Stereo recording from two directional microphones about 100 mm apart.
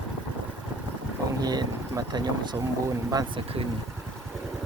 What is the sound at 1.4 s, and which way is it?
Speech, 45° right (ahead or behind).